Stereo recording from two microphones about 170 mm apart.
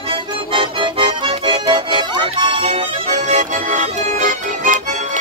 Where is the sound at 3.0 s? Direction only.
45° right (ahead or behind).